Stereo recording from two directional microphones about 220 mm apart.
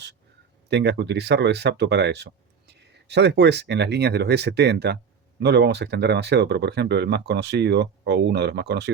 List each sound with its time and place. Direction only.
0.7 s speech: 50° right (ahead or behind)